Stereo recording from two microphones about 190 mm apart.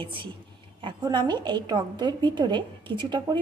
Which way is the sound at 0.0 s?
25° right (ahead or behind).